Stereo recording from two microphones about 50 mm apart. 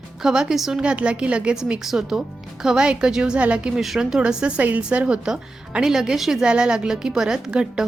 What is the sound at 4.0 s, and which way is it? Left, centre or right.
Speech, centre.